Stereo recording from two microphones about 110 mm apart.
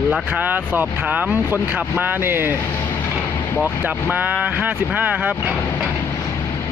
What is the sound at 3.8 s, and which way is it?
Speech, 15° right (ahead or behind).